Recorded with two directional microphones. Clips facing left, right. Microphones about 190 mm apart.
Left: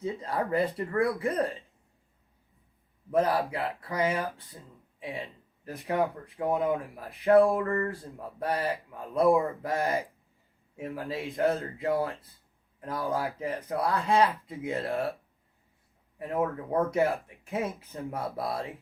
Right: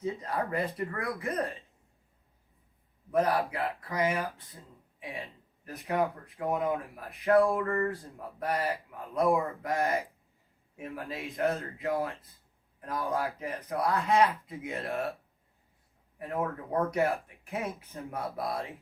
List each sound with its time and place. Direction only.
0.0 s speech: 30° left (ahead or behind)
3.1 s speech: 30° left (ahead or behind)
16.9 s speech: 30° left (ahead or behind)